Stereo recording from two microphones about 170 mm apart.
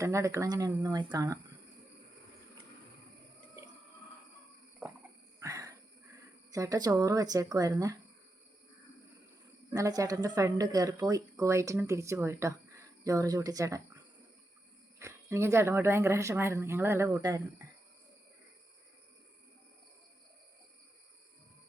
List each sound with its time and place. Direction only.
0.0 s a woman's voice: 15° right (ahead or behind)
5.4 s a sound: 20° right (ahead or behind)
6.5 s a woman's voice: 20° right (ahead or behind)
9.7 s a woman's voice: 20° right (ahead or behind)